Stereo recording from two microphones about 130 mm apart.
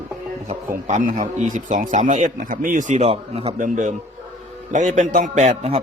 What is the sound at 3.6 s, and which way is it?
Speech, 80° right.